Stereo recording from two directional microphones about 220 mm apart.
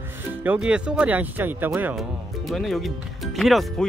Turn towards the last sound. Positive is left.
turn(degrees=0)  # may be behind; listen again after turning